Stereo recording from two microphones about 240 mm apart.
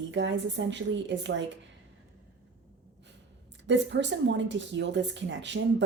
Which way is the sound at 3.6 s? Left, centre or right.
Right.